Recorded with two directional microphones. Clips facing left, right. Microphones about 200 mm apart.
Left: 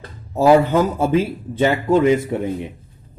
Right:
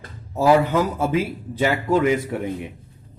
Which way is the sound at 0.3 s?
25° left (ahead or behind).